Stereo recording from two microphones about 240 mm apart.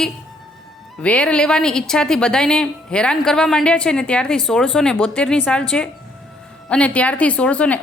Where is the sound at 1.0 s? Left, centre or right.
Centre.